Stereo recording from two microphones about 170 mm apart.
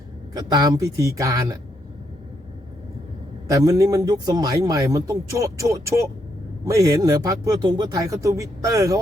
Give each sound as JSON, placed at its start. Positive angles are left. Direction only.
{"t": 0.3, "sound": "speech", "side_deg": -25}
{"t": 3.5, "sound": "speech", "side_deg": -20}